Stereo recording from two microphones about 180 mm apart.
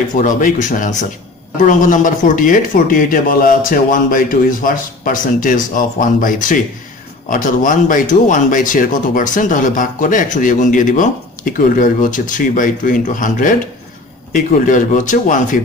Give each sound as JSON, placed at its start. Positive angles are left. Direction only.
{"t": 0.1, "sound": "speech", "side_deg": 45}